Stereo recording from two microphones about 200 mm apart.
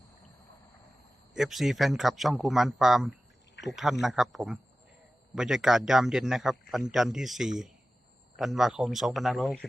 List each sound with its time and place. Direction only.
1.3 s speech: centre (ahead or behind)
3.6 s a sound: 60° left (ahead or behind)
4.0 s speech: centre (ahead or behind)